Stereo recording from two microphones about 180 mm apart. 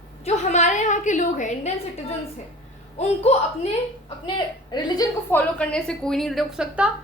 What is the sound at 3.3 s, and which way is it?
Speech, 35° left (ahead or behind).